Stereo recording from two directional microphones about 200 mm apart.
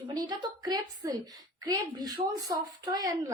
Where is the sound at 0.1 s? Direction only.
20° right (ahead or behind).